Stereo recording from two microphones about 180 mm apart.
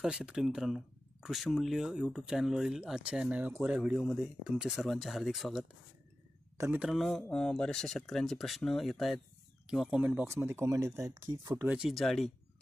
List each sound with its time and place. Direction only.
0.0 s speech: 5° right (ahead or behind)
6.9 s speech: centre (ahead or behind); by 11.7 s 15° right (ahead or behind)
11.7 s speech: centre (ahead or behind)